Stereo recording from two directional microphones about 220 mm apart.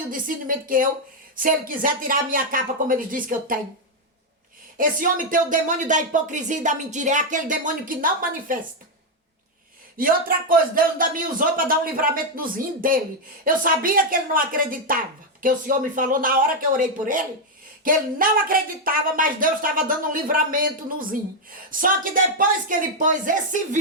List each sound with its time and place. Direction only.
0.1 s a woman's voice: 40° right (ahead or behind)
4.8 s a woman's voice: 40° right (ahead or behind)
10.0 s a woman's voice: 40° right (ahead or behind)